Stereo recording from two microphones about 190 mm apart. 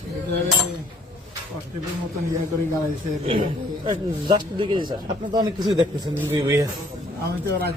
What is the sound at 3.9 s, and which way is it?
Speech, 25° right (ahead or behind).